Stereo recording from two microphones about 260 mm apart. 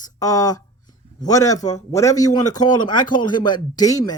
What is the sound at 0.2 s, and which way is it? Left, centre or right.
Speech, centre.